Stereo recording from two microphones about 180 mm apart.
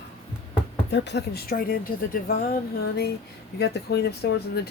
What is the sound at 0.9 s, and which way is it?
Speech, 70° left (ahead or behind).